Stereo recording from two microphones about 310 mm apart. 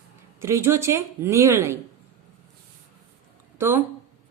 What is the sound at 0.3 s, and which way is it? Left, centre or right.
Speech, centre.